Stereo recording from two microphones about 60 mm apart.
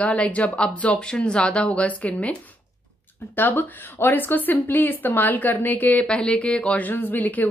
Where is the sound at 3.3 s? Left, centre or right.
Left.